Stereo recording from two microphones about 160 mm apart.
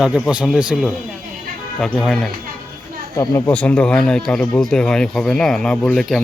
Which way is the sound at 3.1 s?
20° left (ahead or behind).